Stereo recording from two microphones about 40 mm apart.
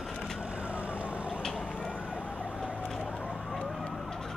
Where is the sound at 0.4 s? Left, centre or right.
Right.